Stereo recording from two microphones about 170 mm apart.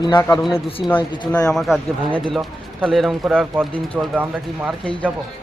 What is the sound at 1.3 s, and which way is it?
Speech, 5° left (ahead or behind).